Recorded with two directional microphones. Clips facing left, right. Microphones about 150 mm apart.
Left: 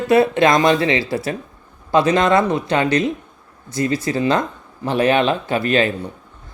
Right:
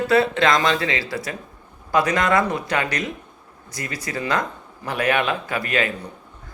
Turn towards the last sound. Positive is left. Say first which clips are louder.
# left 6 dB
turn(degrees=30)  # may be behind; listen again after turning